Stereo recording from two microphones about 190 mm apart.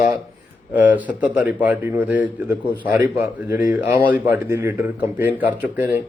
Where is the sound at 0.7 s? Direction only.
10° right (ahead or behind).